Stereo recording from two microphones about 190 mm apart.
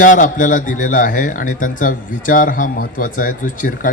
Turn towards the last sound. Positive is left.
turn(degrees=45)  # may be behind; listen again after turning